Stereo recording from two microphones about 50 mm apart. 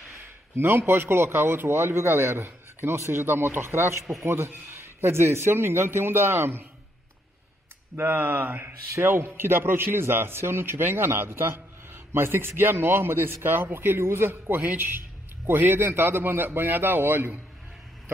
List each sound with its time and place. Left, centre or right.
0.1 s a man's voice: right
7.9 s a man's voice: right